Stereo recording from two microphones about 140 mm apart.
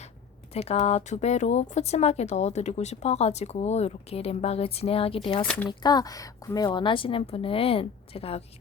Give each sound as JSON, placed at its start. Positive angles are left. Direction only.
{"t": 0.5, "sound": "speech", "side_deg": 50}
{"t": 5.4, "sound": "speech", "side_deg": 10}
{"t": 5.8, "sound": "a woman's voice", "side_deg": 30}